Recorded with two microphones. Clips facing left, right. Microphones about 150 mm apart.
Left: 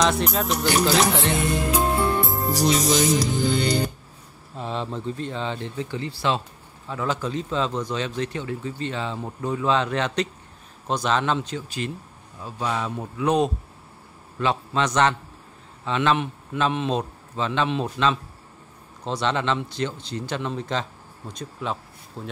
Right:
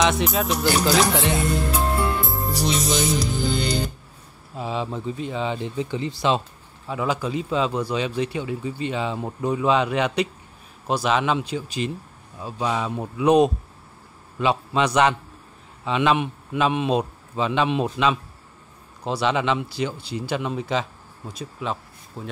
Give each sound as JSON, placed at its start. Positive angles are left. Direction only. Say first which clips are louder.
{"t": 0.0, "sound": "speech", "louder": "right 1 dB", "side_deg": -5}
{"t": 2.2, "sound": "music", "louder": "left 3 dB", "side_deg": 0}
{"t": 3.3, "sound": "speech", "louder": "left 2 dB", "side_deg": 0}